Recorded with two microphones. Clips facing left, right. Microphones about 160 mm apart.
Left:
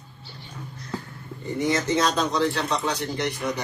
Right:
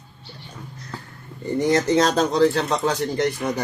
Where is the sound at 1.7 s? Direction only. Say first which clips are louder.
Right 5 dB; 40° right (ahead or behind).